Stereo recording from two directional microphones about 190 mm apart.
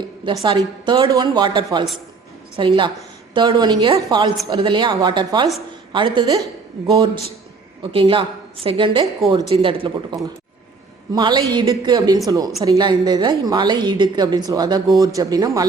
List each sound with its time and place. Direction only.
0.0 s a woman's voice: 25° right (ahead or behind)